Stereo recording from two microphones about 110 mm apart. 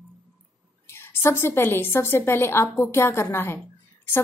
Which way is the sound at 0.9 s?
20° left (ahead or behind).